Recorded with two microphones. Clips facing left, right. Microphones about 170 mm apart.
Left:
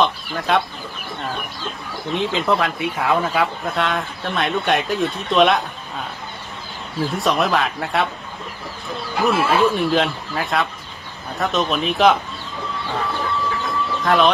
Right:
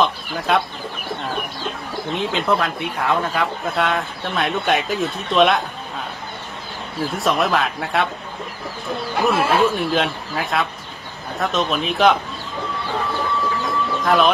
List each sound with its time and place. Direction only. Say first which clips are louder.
0.0 s speech: even; centre (ahead or behind)
2.1 s speech: left 1 dB; centre (ahead or behind)
7.1 s speech: even; centre (ahead or behind)
9.2 s speech: even; centre (ahead or behind)
14.0 s speech: even; centre (ahead or behind)